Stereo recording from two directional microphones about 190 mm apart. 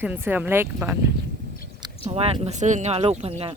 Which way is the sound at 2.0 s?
30° right (ahead or behind).